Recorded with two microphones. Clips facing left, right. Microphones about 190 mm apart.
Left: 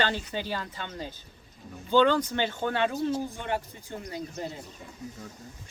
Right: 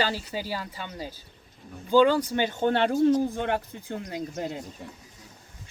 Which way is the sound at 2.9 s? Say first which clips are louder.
Right 8 dB; 50° right (ahead or behind).